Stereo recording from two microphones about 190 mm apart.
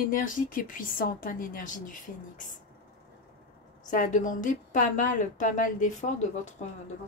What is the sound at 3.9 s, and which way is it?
Speech, 45° left (ahead or behind).